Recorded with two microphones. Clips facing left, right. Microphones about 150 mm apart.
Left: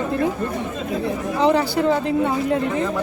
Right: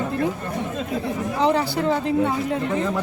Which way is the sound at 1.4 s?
Centre (ahead or behind).